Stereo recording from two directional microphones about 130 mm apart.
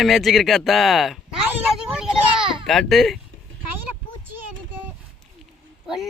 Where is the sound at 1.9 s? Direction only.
5° right (ahead or behind).